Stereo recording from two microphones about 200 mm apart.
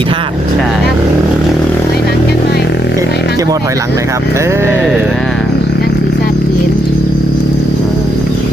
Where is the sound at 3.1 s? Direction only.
55° left (ahead or behind).